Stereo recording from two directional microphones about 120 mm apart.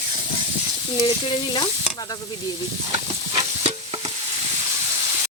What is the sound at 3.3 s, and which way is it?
Stir, 45° right (ahead or behind).